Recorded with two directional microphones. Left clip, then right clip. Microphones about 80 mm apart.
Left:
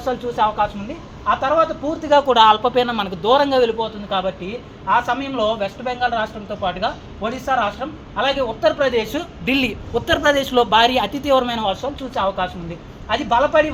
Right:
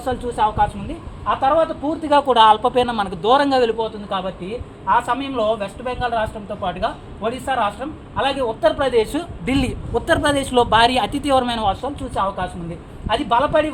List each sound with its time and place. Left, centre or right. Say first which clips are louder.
0.0 s a man's voice: left 1 dB; right
1.3 s a woman's voice: even; right